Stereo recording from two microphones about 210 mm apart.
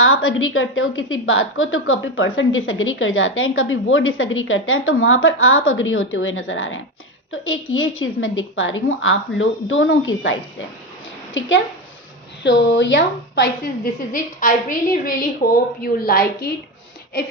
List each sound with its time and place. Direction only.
0.0 s a woman's voice: 75° left (ahead or behind)
11.3 s a woman's voice: 65° left (ahead or behind); by 16.5 s 45° left (ahead or behind)